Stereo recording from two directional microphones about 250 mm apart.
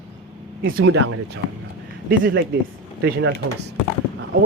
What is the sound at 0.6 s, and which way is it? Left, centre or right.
Speech, right.